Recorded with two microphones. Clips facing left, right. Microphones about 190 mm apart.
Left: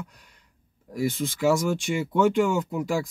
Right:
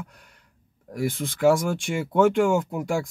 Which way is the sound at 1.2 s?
50° right (ahead or behind).